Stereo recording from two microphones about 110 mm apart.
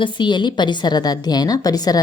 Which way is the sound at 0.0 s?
45° left (ahead or behind).